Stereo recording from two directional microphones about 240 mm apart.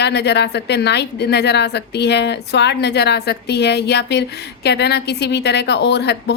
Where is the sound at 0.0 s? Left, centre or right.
Left.